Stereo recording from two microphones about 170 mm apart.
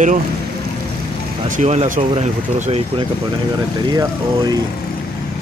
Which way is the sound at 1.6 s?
40° right (ahead or behind).